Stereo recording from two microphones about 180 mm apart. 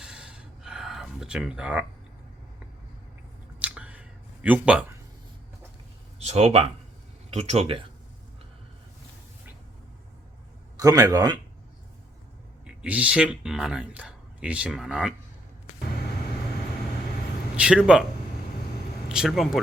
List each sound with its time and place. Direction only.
0.0 s gasp: 5° right (ahead or behind)
3.6 s a sound: 5° right (ahead or behind)
4.4 s speech: 10° right (ahead or behind)
6.1 s speech: 35° right (ahead or behind)
10.8 s speech: 20° right (ahead or behind)
12.6 s speech: 5° right (ahead or behind)
17.6 s speech: 5° right (ahead or behind)
19.0 s speech: 5° right (ahead or behind)